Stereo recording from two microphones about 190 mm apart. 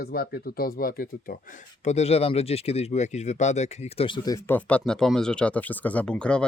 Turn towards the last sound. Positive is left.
turn(degrees=5)  # may be behind; listen again after turning